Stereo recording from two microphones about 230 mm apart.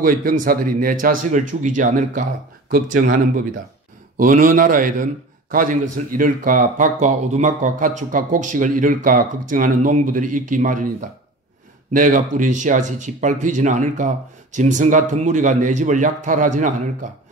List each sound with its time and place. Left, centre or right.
0.0 s a man's voice: right